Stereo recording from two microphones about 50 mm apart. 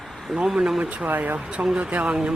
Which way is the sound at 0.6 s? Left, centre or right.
Centre.